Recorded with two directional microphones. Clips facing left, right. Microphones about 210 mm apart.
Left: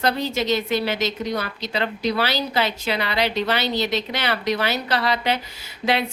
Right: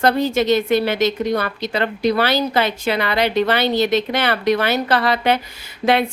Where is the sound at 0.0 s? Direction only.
50° right (ahead or behind).